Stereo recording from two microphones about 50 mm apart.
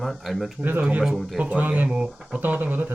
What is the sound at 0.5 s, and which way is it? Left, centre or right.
Speech, right.